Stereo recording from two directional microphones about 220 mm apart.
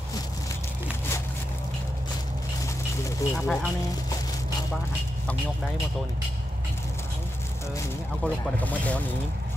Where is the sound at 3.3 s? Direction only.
Centre (ahead or behind).